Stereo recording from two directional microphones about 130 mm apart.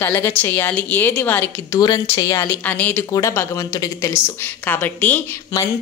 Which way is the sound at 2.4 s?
15° left (ahead or behind).